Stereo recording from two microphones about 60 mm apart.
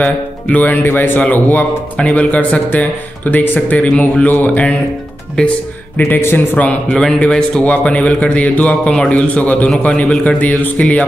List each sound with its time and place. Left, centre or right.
0.0 s speech: left
5.4 s a man's voice: centre
5.9 s a man's voice: left; by 9.1 s centre
9.1 s speech: left